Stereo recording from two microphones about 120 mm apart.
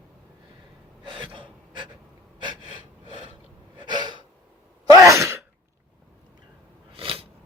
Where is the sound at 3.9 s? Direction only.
40° right (ahead or behind).